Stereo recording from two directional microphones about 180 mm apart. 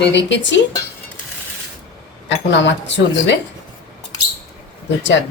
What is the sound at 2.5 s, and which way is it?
Speech, 85° left.